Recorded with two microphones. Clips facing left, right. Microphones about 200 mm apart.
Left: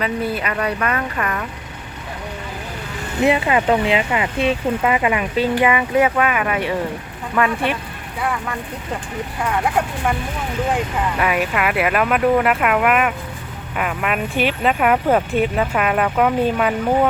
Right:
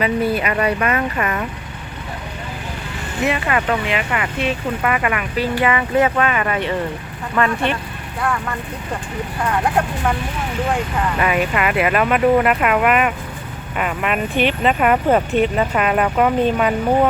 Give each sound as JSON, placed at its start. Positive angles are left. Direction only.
{"t": 0.0, "sound": "speech", "side_deg": -5}
{"t": 3.2, "sound": "speech", "side_deg": 25}
{"t": 11.2, "sound": "speech", "side_deg": 0}